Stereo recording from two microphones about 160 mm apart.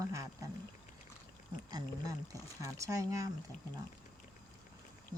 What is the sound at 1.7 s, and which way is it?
Speech, 20° right (ahead or behind).